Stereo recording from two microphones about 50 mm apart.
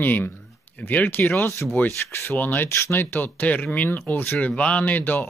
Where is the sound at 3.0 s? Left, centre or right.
Left.